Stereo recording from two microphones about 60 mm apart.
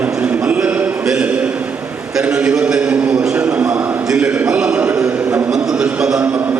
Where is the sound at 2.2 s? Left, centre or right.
Centre.